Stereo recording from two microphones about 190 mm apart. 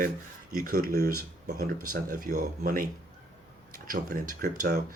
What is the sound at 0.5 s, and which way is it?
Speech, 50° right (ahead or behind).